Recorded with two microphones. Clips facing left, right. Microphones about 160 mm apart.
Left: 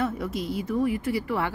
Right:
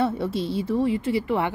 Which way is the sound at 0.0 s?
30° right (ahead or behind).